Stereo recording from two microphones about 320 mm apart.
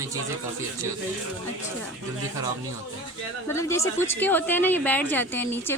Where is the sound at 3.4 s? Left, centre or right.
Centre.